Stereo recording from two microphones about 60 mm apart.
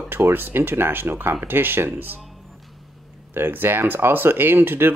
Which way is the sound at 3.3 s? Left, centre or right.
Right.